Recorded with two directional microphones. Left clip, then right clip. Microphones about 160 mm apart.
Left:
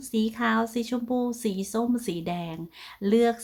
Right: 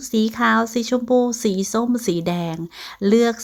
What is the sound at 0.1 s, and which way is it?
Speech, 35° right (ahead or behind).